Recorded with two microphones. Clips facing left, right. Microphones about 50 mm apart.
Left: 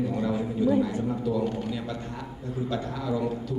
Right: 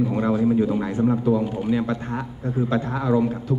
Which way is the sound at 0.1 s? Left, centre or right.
Right.